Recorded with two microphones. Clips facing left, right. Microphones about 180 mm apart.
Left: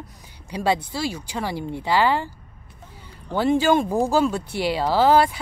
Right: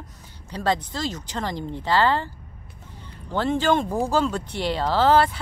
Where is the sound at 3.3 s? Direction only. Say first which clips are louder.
Left 3 dB; 10° left (ahead or behind).